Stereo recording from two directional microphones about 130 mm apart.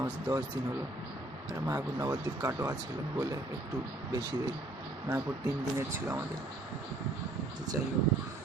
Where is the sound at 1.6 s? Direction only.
25° right (ahead or behind).